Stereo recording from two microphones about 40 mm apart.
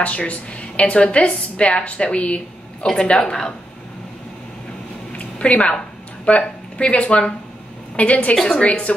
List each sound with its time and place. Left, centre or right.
0.0 s a woman's voice: left
3.3 s speech: centre
5.1 s a sound: left
6.2 s a woman's voice: left